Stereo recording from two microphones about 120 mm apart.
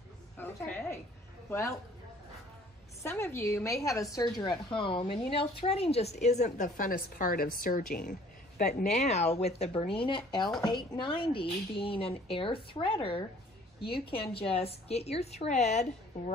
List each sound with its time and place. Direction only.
0.4 s a sound: 15° left (ahead or behind)
1.5 s a woman's voice: 20° left (ahead or behind)
3.0 s a woman's voice: 20° left (ahead or behind); by 6.9 s 85° left
8.1 s a woman's voice: 90° left; by 15.9 s 75° left (ahead or behind)